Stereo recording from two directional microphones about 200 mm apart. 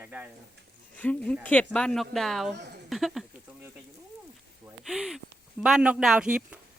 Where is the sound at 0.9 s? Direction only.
5° left (ahead or behind).